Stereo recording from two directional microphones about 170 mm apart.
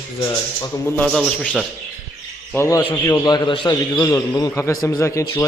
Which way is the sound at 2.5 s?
15° left (ahead or behind).